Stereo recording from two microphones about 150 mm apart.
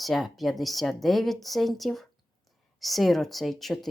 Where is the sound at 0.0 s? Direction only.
Centre (ahead or behind).